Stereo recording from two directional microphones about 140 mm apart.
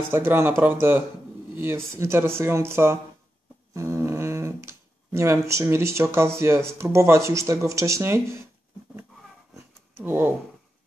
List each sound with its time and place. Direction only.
0.1 s speech: 15° right (ahead or behind)
3.7 s a sound: 20° right (ahead or behind)
6.1 s speech: 20° right (ahead or behind)
10.0 s speech: 15° right (ahead or behind)